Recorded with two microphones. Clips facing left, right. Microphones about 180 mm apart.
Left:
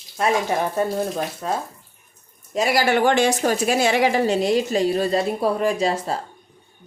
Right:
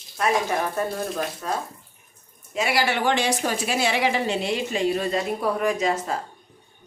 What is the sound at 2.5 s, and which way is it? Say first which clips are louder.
A woman's voice: left 5 dB; 40° left (ahead or behind).